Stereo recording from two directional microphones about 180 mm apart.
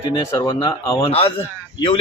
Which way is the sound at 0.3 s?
15° left (ahead or behind).